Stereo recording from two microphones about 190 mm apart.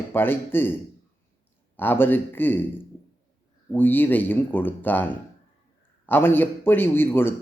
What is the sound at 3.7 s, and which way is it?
Speech, 10° left (ahead or behind).